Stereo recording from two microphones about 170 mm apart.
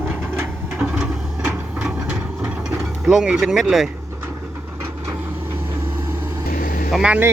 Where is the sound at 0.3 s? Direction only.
5° right (ahead or behind).